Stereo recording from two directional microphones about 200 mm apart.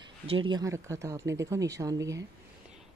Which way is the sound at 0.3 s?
25° right (ahead or behind).